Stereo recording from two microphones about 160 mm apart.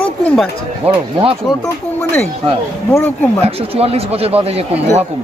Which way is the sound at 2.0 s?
5° left (ahead or behind).